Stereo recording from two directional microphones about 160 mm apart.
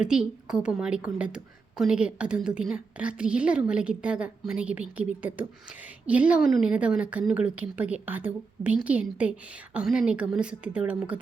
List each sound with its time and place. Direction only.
0.0 s a woman's voice: 5° right (ahead or behind)